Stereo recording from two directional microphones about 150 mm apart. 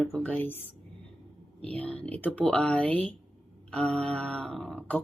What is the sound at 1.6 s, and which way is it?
A woman's voice, 5° left (ahead or behind).